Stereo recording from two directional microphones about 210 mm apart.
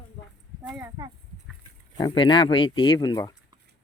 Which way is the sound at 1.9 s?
20° left (ahead or behind).